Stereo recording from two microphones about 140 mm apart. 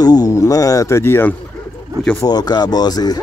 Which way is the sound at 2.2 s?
30° left (ahead or behind).